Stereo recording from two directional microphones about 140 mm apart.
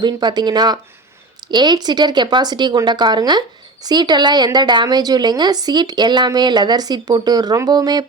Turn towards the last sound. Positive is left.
turn(degrees=-30)  # may be behind; listen again after turning